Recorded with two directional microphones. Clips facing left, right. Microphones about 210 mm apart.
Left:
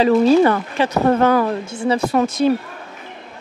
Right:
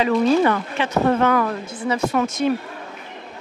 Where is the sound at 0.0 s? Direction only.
35° left (ahead or behind).